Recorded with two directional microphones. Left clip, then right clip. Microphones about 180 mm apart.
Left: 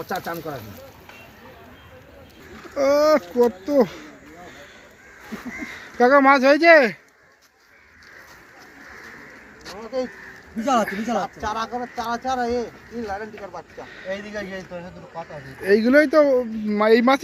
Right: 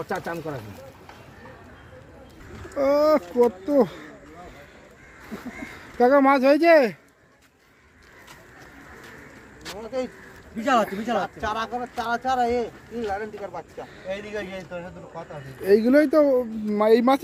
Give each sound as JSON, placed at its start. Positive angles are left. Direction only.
{"t": 0.1, "sound": "speech", "side_deg": -30}
{"t": 2.7, "sound": "speech", "side_deg": -10}
{"t": 6.0, "sound": "speech", "side_deg": -10}
{"t": 10.6, "sound": "speech", "side_deg": 0}
{"t": 11.3, "sound": "speech", "side_deg": -25}
{"t": 13.5, "sound": "speech", "side_deg": -5}
{"t": 14.1, "sound": "speech", "side_deg": -35}
{"t": 15.6, "sound": "speech", "side_deg": -10}